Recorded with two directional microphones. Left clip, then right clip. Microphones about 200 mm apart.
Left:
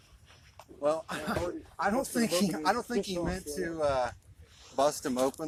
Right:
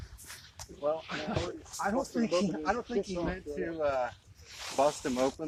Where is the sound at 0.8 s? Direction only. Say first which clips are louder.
Left 3 dB; 15° left (ahead or behind).